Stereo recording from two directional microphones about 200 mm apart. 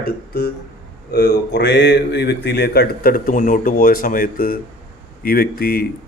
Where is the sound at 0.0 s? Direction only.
50° left (ahead or behind).